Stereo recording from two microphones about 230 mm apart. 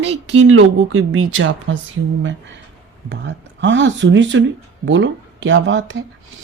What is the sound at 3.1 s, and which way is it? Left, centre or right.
Speech, right.